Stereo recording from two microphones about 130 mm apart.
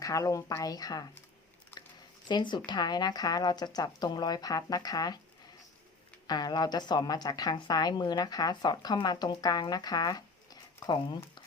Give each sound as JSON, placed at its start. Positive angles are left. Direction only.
{"t": 0.0, "sound": "a woman's voice", "side_deg": 25}
{"t": 1.7, "sound": "a sound", "side_deg": 15}
{"t": 2.2, "sound": "a woman's voice", "side_deg": 35}
{"t": 6.2, "sound": "a woman's voice", "side_deg": 30}